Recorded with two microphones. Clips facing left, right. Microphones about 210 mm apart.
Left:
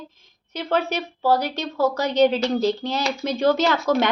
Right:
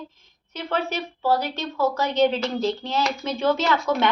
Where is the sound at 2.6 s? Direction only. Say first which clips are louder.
Left 2 dB; 40° left (ahead or behind).